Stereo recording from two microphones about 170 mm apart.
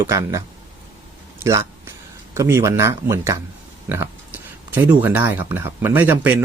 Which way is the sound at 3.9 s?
10° right (ahead or behind).